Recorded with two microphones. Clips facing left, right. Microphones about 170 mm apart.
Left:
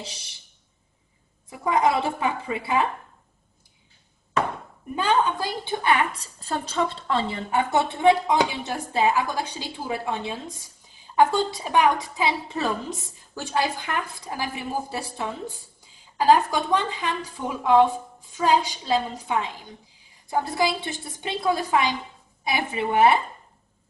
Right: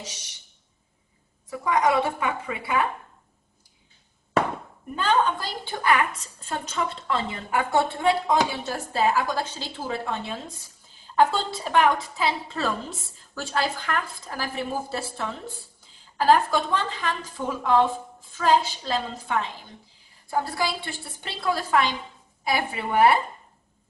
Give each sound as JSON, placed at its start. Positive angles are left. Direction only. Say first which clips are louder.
{"t": 0.0, "sound": "a woman's voice", "louder": "left 1 dB", "side_deg": 30}
{"t": 1.6, "sound": "a woman's voice", "louder": "even", "side_deg": 25}
{"t": 4.9, "sound": "a woman's voice", "louder": "even", "side_deg": 10}
{"t": 7.7, "sound": "a woman's voice", "louder": "left 3 dB", "side_deg": 20}